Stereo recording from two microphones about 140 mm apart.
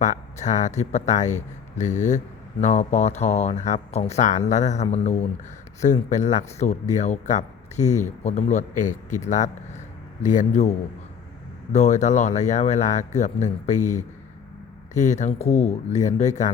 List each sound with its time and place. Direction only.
0.0 s speech: 60° left (ahead or behind)